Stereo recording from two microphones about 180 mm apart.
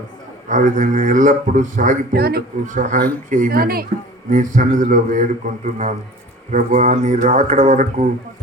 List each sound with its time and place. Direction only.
0.4 s speech: 45° right (ahead or behind)